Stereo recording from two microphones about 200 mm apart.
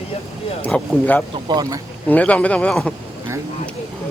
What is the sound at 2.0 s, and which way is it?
Speech, 5° left (ahead or behind).